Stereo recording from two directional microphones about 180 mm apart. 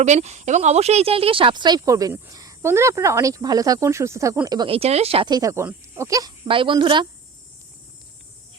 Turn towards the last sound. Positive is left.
turn(degrees=-25)  # may be behind; listen again after turning